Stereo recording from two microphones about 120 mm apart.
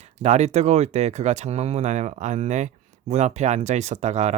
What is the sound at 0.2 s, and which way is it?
Speech, 70° right (ahead or behind).